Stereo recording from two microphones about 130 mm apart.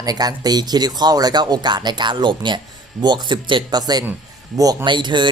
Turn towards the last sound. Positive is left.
turn(degrees=-35)  # may be behind; listen again after turning